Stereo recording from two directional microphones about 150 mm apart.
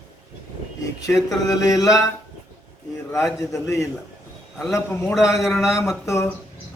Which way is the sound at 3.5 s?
20° left (ahead or behind).